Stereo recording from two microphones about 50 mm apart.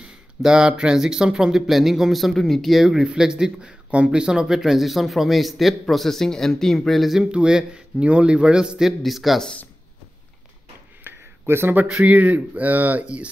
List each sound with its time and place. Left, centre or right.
0.4 s speech: centre
3.0 s speech: centre
7.0 s speech: centre
7.2 s a man's voice: centre
9.0 s speech: centre
11.1 s a sound: right
11.9 s a man's voice: centre
12.2 s speech: right